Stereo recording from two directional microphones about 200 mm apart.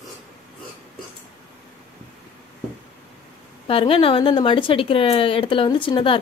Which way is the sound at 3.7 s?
25° left (ahead or behind).